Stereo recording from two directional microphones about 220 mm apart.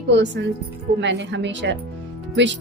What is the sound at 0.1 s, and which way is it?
A woman's voice, 55° right (ahead or behind).